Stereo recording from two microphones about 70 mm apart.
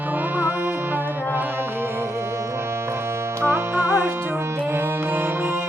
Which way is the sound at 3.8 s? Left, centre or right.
Right.